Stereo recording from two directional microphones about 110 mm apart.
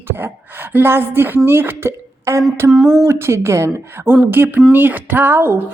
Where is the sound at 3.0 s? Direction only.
25° right (ahead or behind).